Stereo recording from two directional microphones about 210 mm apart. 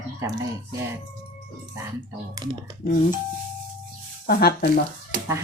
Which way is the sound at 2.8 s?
40° left (ahead or behind).